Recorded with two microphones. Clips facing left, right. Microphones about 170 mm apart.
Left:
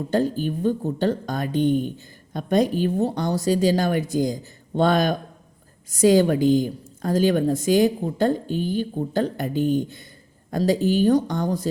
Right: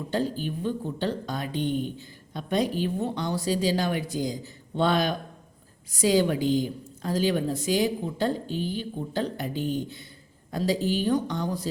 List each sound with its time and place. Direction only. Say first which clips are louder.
0.1 s speech: left 6 dB; 50° left (ahead or behind)